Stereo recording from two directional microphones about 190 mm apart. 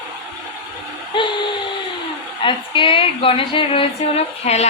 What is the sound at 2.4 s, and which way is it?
A woman's voice, 25° left (ahead or behind).